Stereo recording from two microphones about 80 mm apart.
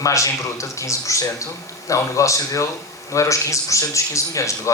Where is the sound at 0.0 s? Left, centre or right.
Left.